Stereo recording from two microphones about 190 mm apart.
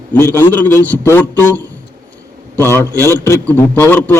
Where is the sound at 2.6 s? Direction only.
10° left (ahead or behind).